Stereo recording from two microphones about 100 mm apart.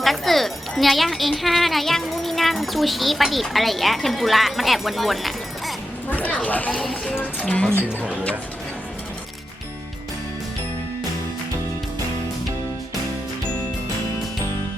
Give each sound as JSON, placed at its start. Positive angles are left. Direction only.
{"t": 0.0, "sound": "speech", "side_deg": 0}
{"t": 6.1, "sound": "a sound", "side_deg": 15}
{"t": 7.2, "sound": "speech", "side_deg": 10}